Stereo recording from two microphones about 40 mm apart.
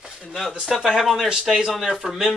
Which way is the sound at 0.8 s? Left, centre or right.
Centre.